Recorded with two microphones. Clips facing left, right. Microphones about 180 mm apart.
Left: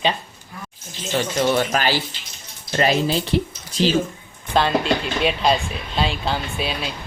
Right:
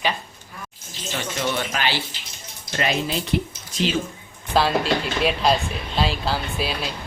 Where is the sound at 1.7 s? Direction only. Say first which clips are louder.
Left 4 dB; 40° left (ahead or behind).